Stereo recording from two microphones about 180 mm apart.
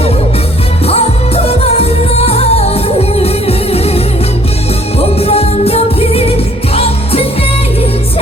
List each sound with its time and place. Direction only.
0.9 s music: 35° left (ahead or behind)